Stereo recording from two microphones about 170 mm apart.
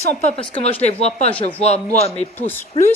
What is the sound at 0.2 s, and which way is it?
A man's voice, 35° left (ahead or behind).